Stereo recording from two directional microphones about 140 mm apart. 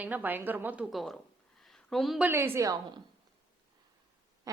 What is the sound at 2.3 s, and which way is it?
Speech, 15° right (ahead or behind).